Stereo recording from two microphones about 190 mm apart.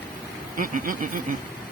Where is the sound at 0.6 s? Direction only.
45° right (ahead or behind).